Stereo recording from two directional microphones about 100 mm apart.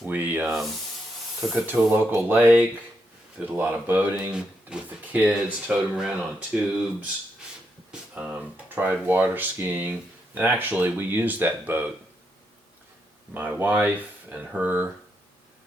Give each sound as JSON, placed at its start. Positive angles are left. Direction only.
{"t": 0.0, "sound": "speech", "side_deg": -15}
{"t": 1.4, "sound": "spray", "side_deg": -5}
{"t": 1.6, "sound": "speech", "side_deg": -20}
{"t": 8.1, "sound": "speech", "side_deg": -15}
{"t": 13.3, "sound": "speech", "side_deg": -15}